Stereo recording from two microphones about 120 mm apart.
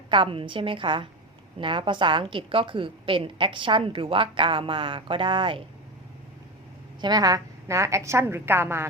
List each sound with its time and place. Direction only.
0.1 s a woman's voice: 45° right (ahead or behind)
7.0 s a woman's voice: 35° right (ahead or behind)